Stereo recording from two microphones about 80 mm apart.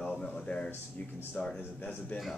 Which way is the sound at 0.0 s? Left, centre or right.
Centre.